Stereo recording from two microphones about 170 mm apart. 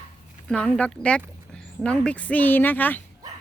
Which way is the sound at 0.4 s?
5° left (ahead or behind).